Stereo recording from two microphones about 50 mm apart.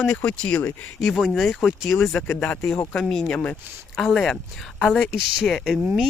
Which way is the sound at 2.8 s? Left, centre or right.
Centre.